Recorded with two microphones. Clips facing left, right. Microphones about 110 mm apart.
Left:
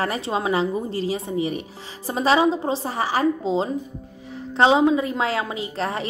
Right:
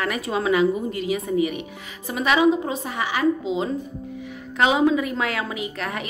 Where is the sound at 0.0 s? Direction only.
30° left (ahead or behind).